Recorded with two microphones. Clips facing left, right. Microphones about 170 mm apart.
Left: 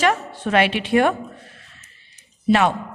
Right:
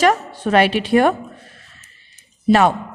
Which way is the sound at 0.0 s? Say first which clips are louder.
Right 4 dB; 40° right (ahead or behind).